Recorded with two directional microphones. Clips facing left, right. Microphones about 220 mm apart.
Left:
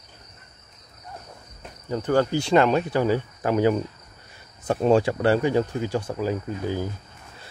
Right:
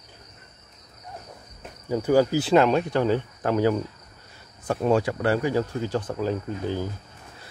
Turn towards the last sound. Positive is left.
turn(degrees=10)  # may be behind; listen again after turning